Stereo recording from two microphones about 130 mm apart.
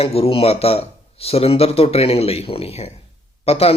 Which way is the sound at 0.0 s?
50° left (ahead or behind).